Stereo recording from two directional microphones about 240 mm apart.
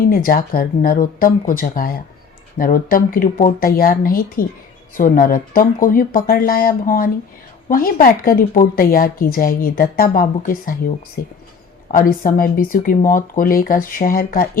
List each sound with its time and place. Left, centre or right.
0.1 s speech: left